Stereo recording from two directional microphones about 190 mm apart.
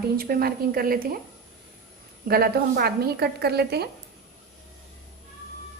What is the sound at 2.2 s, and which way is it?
A woman's voice, 55° right (ahead or behind).